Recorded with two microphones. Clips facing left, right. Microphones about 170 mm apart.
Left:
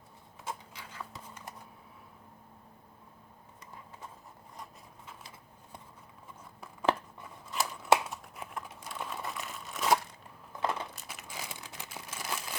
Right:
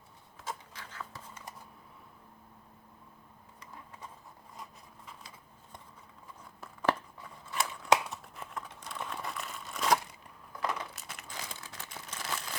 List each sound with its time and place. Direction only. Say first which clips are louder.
0.4 s a sound: even; 10° left (ahead or behind)
4.5 s a sound: even; centre (ahead or behind)
6.8 s scissors: left 1 dB; 20° left (ahead or behind)
7.7 s crumpling: left 1 dB; 5° left (ahead or behind)
10.6 s crushing: left 2 dB; 25° left (ahead or behind)
10.9 s crumpling: left 1 dB; 5° left (ahead or behind)